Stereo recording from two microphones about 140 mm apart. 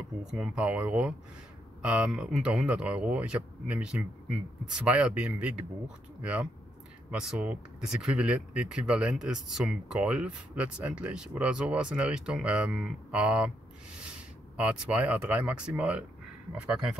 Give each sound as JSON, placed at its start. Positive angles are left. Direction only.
{"t": 0.2, "sound": "speech", "side_deg": -5}
{"t": 14.6, "sound": "speech", "side_deg": -10}